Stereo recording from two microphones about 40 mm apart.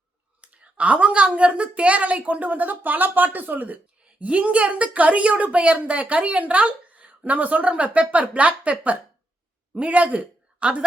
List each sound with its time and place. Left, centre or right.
0.4 s speech: right
4.2 s a man's voice: right